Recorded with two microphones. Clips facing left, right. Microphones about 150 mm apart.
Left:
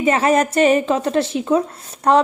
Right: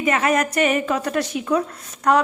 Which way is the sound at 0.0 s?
30° left (ahead or behind).